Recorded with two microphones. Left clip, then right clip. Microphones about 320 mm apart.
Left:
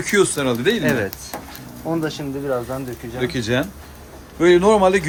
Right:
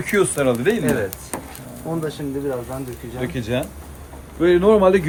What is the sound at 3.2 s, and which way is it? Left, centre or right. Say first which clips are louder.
Speech: left 3 dB; centre.